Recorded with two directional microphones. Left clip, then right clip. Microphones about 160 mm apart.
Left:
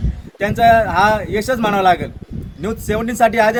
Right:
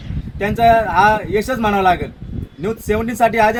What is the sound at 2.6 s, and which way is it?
Speech, 30° left (ahead or behind).